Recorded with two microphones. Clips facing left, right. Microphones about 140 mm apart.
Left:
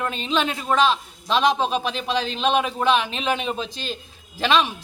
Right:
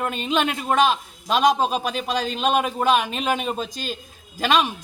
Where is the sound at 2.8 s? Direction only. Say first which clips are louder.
Right 1 dB; 45° right (ahead or behind).